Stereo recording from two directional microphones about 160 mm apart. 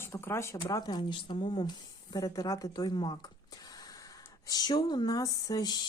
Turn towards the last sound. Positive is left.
turn(degrees=25)  # may be behind; listen again after turning